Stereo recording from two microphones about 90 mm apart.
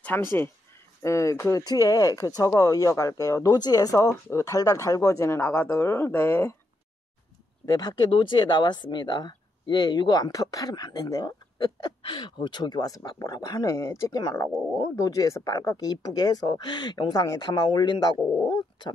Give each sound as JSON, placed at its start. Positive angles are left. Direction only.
{"t": 0.0, "sound": "speech", "side_deg": 25}
{"t": 7.6, "sound": "speech", "side_deg": 45}
{"t": 11.5, "sound": "a sound", "side_deg": 50}
{"t": 12.0, "sound": "speech", "side_deg": 65}
{"t": 17.6, "sound": "speech", "side_deg": 55}
{"t": 18.5, "sound": "dog", "side_deg": 50}